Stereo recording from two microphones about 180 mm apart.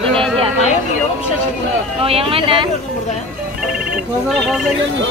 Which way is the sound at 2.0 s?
30° right (ahead or behind).